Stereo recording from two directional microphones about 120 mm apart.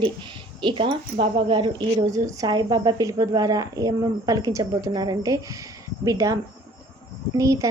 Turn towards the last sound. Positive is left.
turn(degrees=-30)  # may be behind; listen again after turning